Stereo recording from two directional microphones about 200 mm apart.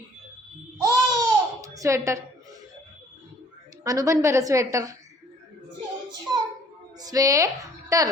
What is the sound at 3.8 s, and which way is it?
Speech, 15° right (ahead or behind).